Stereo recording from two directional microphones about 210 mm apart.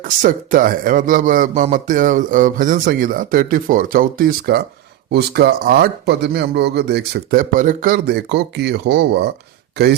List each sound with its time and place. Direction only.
0.0 s speech: 40° right (ahead or behind)